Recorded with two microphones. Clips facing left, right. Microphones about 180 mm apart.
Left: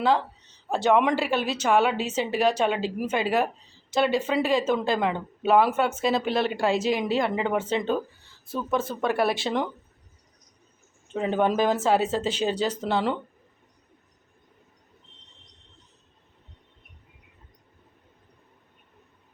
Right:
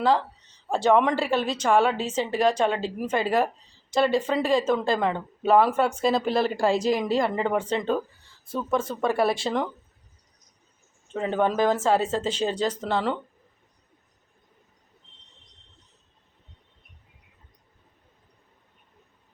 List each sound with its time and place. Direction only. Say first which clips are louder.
0.7 s speech: right 1 dB; centre (ahead or behind)
2.0 s speech: even; 30° right (ahead or behind)
2.4 s speech: right 1 dB; 5° left (ahead or behind)
11.1 s speech: left 1 dB; 5° left (ahead or behind)